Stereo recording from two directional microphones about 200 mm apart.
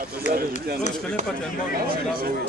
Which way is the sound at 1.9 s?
45° right (ahead or behind).